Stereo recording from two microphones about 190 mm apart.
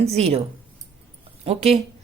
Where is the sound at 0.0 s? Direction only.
35° right (ahead or behind).